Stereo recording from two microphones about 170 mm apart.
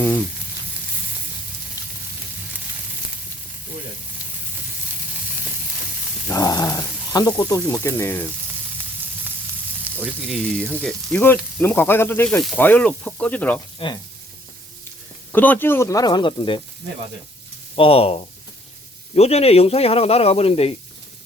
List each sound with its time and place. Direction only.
1.8 s a sound: 20° left (ahead or behind)
6.2 s snake: 20° left (ahead or behind)
9.9 s frying: 10° right (ahead or behind)
10.3 s speech: 5° left (ahead or behind)
13.7 s speech: 30° left (ahead or behind)
15.3 s speech: 10° left (ahead or behind); by 16.6 s 30° left (ahead or behind)
17.7 s speech: 35° left (ahead or behind)